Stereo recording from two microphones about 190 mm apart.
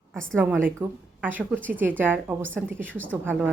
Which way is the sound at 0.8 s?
10° right (ahead or behind).